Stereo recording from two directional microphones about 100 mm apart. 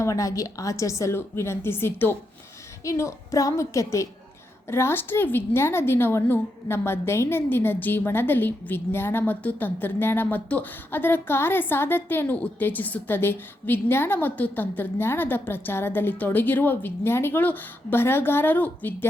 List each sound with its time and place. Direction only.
0.0 s a woman's voice: 35° left (ahead or behind); by 18.9 s 15° left (ahead or behind)